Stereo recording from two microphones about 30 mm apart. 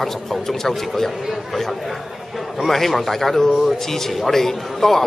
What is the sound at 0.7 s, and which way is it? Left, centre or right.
Speech, centre.